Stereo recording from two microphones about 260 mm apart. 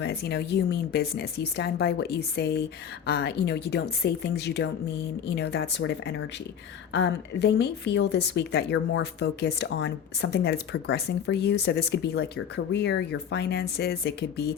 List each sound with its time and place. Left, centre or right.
0.0 s speech: left